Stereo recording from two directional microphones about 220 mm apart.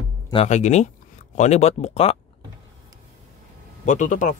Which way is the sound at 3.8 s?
35° left (ahead or behind).